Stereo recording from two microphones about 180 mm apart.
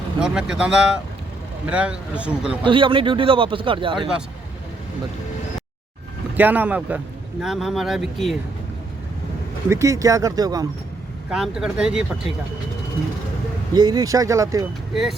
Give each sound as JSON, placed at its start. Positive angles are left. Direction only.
{"t": 0.2, "sound": "speech", "side_deg": -5}
{"t": 2.6, "sound": "a man's voice", "side_deg": -30}
{"t": 6.3, "sound": "speech", "side_deg": -10}
{"t": 9.6, "sound": "speech", "side_deg": -15}
{"t": 11.3, "sound": "speech", "side_deg": -5}
{"t": 13.7, "sound": "a man's voice", "side_deg": -20}